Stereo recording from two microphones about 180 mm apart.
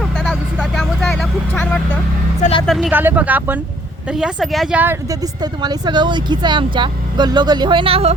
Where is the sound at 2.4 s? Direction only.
35° left (ahead or behind).